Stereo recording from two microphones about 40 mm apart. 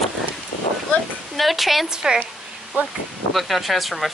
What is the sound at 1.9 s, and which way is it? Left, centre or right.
Speech, centre.